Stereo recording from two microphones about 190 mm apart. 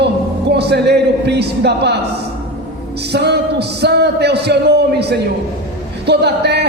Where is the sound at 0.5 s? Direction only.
60° right (ahead or behind).